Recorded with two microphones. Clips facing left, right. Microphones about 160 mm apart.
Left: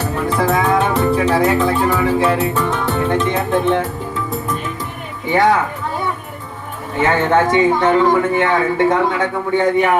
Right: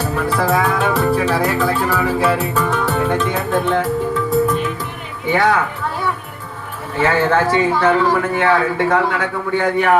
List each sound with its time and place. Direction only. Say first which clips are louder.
0.3 s music: left 2 dB; 20° left (ahead or behind)
3.1 s a man's voice: left 1 dB; 20° left (ahead or behind)
5.3 s a man's voice: left 2 dB; 20° left (ahead or behind)
6.9 s a man's voice: left 1 dB; 20° left (ahead or behind)